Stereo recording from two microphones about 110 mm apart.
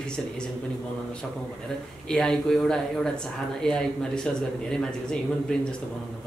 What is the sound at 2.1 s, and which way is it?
Speech, 5° left (ahead or behind).